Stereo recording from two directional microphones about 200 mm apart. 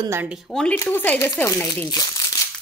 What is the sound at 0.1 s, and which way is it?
A woman's voice, 5° right (ahead or behind).